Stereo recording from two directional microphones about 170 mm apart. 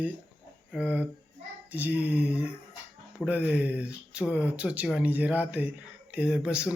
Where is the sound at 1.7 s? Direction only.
10° right (ahead or behind).